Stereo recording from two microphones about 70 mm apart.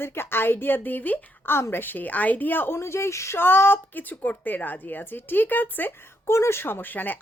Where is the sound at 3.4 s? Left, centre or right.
Left.